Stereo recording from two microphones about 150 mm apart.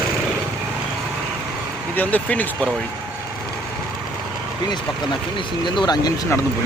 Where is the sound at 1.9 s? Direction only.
10° left (ahead or behind).